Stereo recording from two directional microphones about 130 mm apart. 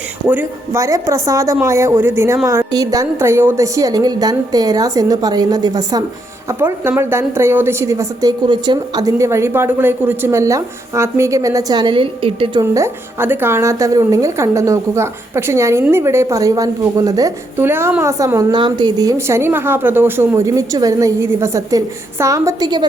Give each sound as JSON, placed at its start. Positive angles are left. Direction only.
{"t": 0.3, "sound": "a woman's voice", "side_deg": -15}
{"t": 6.5, "sound": "a woman's voice", "side_deg": -20}
{"t": 12.7, "sound": "a woman's voice", "side_deg": -20}